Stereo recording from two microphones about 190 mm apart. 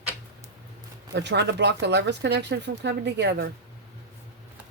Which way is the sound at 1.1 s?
65° right (ahead or behind).